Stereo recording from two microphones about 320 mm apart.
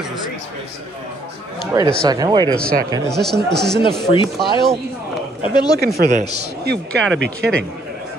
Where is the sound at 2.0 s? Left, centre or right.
Centre.